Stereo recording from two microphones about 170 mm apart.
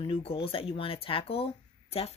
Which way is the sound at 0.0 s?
35° left (ahead or behind).